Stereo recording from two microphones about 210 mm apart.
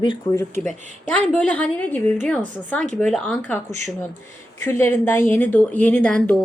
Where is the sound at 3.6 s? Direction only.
35° right (ahead or behind).